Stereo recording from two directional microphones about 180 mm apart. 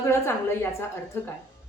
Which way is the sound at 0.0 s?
15° left (ahead or behind).